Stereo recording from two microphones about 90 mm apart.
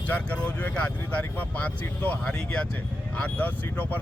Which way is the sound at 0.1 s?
15° left (ahead or behind).